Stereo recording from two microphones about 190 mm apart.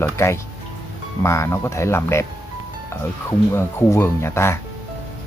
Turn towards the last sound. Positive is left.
turn(degrees=15)  # may be behind; listen again after turning